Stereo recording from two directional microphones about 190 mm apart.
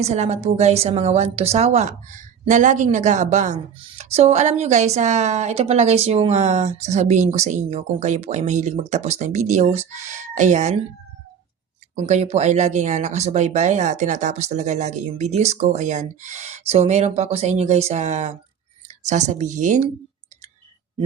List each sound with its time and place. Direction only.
0.0 s a woman's voice: 35° right (ahead or behind)
11.9 s a woman's voice: 35° right (ahead or behind)